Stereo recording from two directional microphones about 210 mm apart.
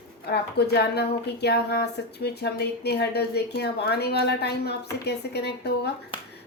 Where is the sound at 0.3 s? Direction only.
50° left (ahead or behind).